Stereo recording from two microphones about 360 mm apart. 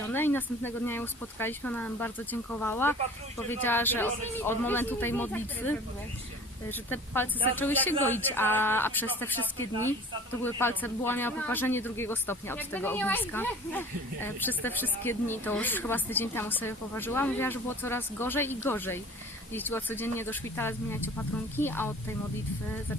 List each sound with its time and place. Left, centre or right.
0.1 s speech: centre